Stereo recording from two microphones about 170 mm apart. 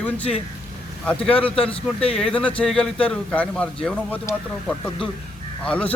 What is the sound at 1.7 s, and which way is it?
Speech, 35° left (ahead or behind).